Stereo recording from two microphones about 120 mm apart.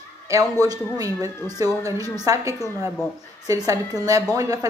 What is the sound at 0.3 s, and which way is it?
A woman's voice, 30° right (ahead or behind).